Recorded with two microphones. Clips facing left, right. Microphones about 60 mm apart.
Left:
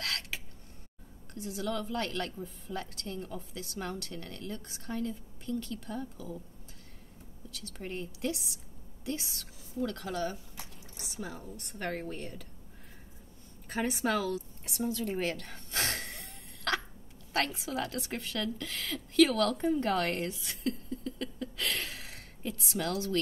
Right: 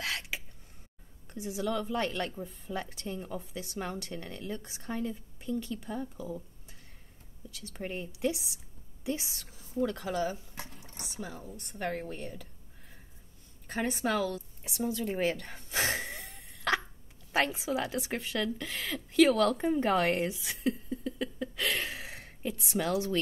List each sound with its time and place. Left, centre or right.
0.0 s a sound: centre
1.3 s a woman's voice: centre
7.7 s a woman's voice: centre
10.5 s dishes: right
11.1 s a woman's voice: centre
13.7 s a woman's voice: centre